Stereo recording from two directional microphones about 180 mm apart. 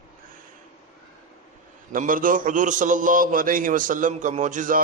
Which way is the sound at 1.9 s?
50° right (ahead or behind).